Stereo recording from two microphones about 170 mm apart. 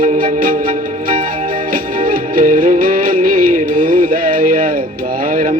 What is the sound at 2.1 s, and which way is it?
Music, 55° right (ahead or behind).